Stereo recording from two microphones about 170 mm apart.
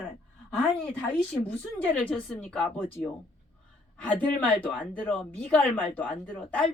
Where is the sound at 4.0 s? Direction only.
5° left (ahead or behind).